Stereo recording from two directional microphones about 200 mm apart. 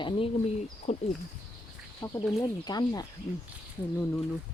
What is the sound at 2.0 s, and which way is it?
Speech, 15° left (ahead or behind).